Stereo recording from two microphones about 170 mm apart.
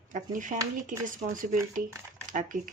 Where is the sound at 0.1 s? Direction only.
50° right (ahead or behind).